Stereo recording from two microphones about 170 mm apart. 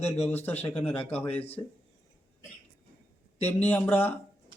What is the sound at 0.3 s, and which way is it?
Speech, 10° left (ahead or behind).